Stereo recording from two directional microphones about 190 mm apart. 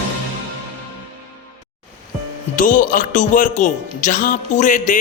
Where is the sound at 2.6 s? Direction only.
45° left (ahead or behind).